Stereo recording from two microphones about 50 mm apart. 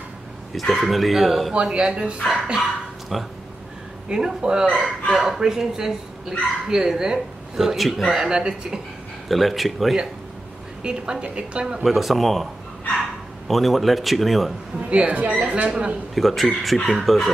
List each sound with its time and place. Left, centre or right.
0.6 s speech: centre
1.5 s a woman's voice: centre
3.1 s speech: centre
4.1 s speech: centre
9.3 s speech: centre
10.8 s a woman's voice: centre
11.8 s speech: centre
13.5 s speech: centre
14.9 s a woman's voice: right
16.2 s speech: centre